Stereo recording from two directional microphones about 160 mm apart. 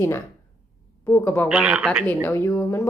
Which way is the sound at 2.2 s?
15° left (ahead or behind).